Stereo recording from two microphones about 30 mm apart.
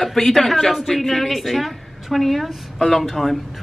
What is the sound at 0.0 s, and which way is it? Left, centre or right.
Speech, centre.